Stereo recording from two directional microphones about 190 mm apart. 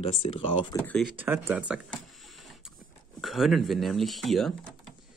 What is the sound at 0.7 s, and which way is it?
Speech, 5° left (ahead or behind).